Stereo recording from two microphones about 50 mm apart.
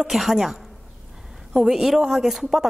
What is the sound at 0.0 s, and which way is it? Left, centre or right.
A woman's voice, centre.